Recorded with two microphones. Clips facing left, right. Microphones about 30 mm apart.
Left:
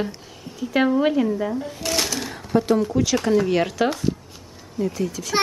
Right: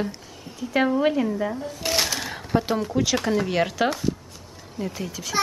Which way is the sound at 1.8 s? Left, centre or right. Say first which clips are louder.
Right 1 dB; centre.